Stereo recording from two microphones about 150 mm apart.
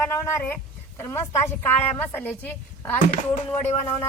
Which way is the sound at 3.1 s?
55° left (ahead or behind).